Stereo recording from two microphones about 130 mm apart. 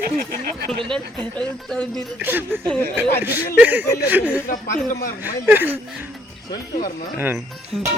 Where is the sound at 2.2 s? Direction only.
15° right (ahead or behind).